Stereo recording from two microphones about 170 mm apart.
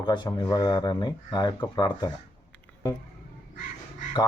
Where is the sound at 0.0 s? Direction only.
25° left (ahead or behind).